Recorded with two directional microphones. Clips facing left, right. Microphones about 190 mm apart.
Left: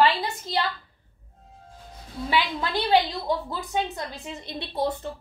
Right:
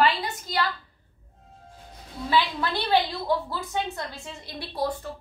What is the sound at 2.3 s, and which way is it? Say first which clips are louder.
A woman's voice: right 1 dB; 15° left (ahead or behind).